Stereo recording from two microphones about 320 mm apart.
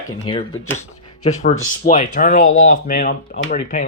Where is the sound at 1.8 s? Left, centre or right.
Centre.